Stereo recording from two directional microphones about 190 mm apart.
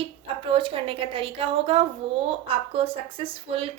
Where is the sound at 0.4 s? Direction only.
30° right (ahead or behind).